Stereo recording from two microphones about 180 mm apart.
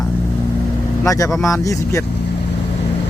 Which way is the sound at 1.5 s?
20° left (ahead or behind).